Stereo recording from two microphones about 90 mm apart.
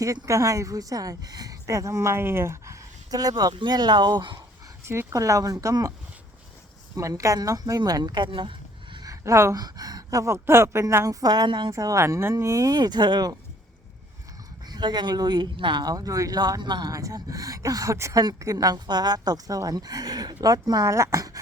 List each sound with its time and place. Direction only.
0.3 s a woman's voice: 35° right (ahead or behind)
3.1 s a woman's voice: 45° right (ahead or behind); by 4.4 s 60° right (ahead or behind)
4.9 s a woman's voice: 35° right (ahead or behind)
6.9 s a woman's voice: 35° right (ahead or behind); by 9.0 s 65° right (ahead or behind)
9.0 s a sound: 35° right (ahead or behind)
9.6 s a woman's voice: 45° right (ahead or behind)
11.4 s a woman's voice: 55° right (ahead or behind)
11.7 s a woman's voice: 35° right (ahead or behind); by 13.3 s 50° right (ahead or behind)
14.7 s a woman's voice: 55° right (ahead or behind)
16.9 s a woman's voice: 40° right (ahead or behind)